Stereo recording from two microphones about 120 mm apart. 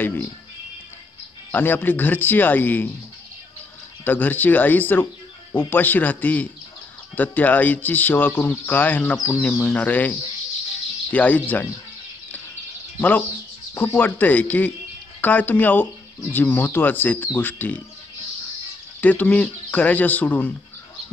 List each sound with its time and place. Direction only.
0.0 s music: 15° left (ahead or behind)
1.5 s speech: 15° left (ahead or behind)
4.0 s speech: 15° left (ahead or behind)
13.7 s speech: 15° left (ahead or behind)
18.9 s speech: 15° left (ahead or behind)